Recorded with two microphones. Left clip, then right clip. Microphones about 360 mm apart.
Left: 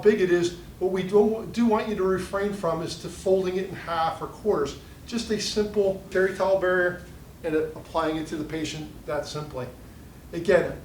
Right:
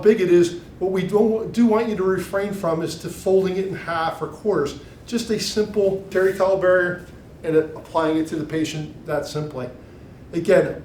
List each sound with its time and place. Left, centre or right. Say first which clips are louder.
0.0 s speech: right 5 dB; left